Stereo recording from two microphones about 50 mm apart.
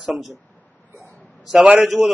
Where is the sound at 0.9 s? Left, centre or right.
Right.